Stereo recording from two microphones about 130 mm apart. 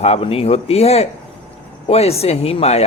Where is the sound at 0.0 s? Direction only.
50° left (ahead or behind).